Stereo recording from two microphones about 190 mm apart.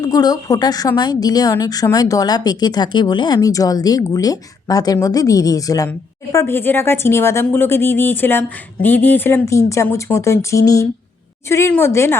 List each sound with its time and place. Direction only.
0.0 s a woman's voice: 20° left (ahead or behind)